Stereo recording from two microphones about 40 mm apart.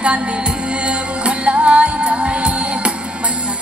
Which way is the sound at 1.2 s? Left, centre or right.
Right.